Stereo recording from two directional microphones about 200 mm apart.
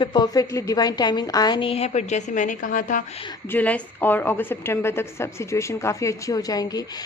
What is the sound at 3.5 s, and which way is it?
A woman's voice, 5° left (ahead or behind).